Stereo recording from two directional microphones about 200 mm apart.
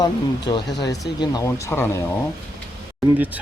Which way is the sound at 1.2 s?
15° left (ahead or behind).